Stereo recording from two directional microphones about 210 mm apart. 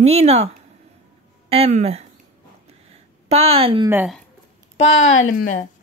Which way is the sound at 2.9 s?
30° right (ahead or behind).